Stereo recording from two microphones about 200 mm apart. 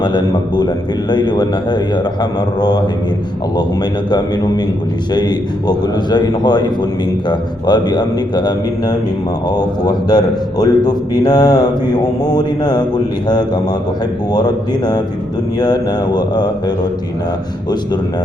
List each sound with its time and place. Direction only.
0.0 s a man's voice: 20° left (ahead or behind)
5.1 s a man's voice: 20° left (ahead or behind)